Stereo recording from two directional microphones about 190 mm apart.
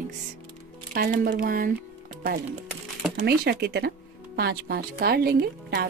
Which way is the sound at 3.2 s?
55° right (ahead or behind).